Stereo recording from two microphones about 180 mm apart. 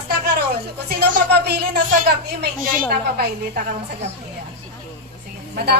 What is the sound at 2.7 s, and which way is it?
Speech, 50° right (ahead or behind).